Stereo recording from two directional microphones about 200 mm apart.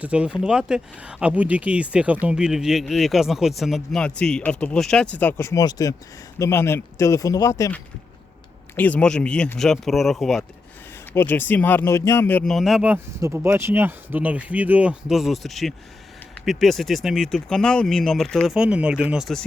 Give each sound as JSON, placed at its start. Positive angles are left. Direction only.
{"t": 0.0, "sound": "speech", "side_deg": -5}